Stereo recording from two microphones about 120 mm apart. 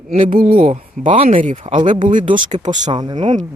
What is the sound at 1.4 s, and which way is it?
Speech, 90° right.